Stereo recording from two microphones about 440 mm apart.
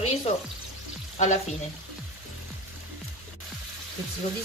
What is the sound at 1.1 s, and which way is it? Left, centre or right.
Frying, centre.